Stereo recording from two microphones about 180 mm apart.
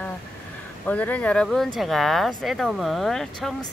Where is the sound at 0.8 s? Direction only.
10° left (ahead or behind).